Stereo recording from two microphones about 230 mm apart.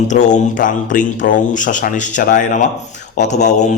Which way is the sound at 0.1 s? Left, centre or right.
Left.